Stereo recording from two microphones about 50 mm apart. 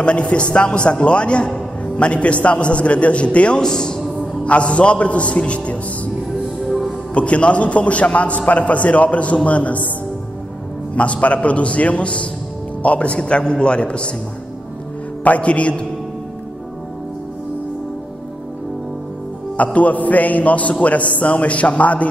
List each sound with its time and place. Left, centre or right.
0.0 s a man's voice: left
4.5 s a man's voice: left
7.2 s a man's voice: left
11.0 s a man's voice: left
15.2 s a man's voice: left
19.5 s a man's voice: left